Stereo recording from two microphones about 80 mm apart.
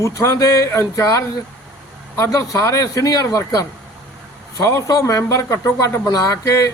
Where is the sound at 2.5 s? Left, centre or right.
Left.